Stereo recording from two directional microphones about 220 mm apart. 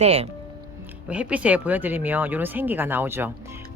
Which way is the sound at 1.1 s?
5° right (ahead or behind).